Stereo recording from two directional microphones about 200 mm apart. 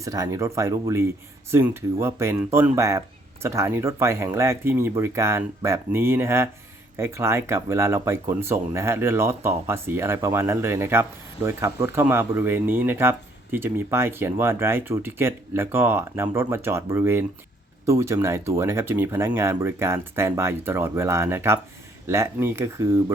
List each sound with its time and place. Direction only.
0.0 s speech: 15° right (ahead or behind)